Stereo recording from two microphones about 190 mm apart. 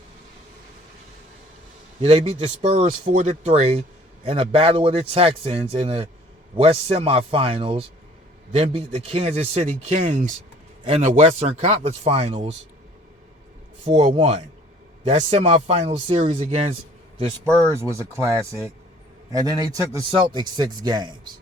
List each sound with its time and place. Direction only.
2.0 s a man's voice: 35° right (ahead or behind)
13.8 s a man's voice: 35° right (ahead or behind)
17.7 s speech: 15° right (ahead or behind)
19.3 s a man's voice: 20° right (ahead or behind)